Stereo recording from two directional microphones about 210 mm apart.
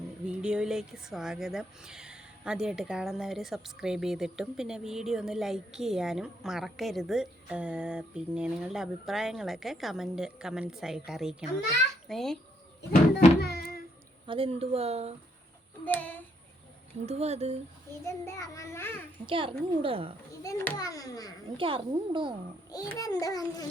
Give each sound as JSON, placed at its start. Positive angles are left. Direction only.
{"t": 0.3, "sound": "speech", "side_deg": -5}
{"t": 12.9, "sound": "a sound", "side_deg": 45}
{"t": 14.3, "sound": "a woman's voice", "side_deg": -25}
{"t": 15.8, "sound": "a child's voice", "side_deg": 10}
{"t": 17.1, "sound": "a woman's voice", "side_deg": -30}
{"t": 18.0, "sound": "a child's voice", "side_deg": 15}
{"t": 19.2, "sound": "a woman's voice", "side_deg": -25}
{"t": 20.4, "sound": "a child's voice", "side_deg": 15}
{"t": 21.6, "sound": "a woman's voice", "side_deg": -25}
{"t": 22.7, "sound": "a child's voice", "side_deg": 15}